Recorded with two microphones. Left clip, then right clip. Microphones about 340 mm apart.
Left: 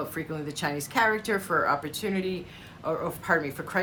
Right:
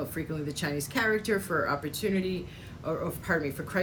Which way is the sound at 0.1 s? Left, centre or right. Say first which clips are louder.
Left 1 dB; centre.